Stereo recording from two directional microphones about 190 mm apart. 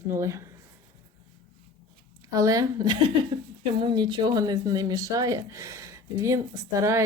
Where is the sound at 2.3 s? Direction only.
20° right (ahead or behind).